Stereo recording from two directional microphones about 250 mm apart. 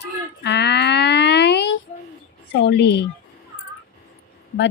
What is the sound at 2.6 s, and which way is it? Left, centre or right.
Speech, left.